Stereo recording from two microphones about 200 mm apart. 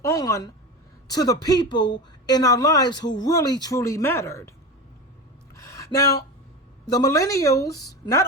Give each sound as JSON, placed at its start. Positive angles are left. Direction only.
{"t": 0.0, "sound": "a woman's voice", "side_deg": 15}
{"t": 5.5, "sound": "a sound", "side_deg": 15}
{"t": 6.8, "sound": "a woman's voice", "side_deg": 20}